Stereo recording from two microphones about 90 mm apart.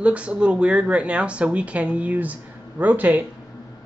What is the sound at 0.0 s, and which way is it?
Speech, 15° right (ahead or behind).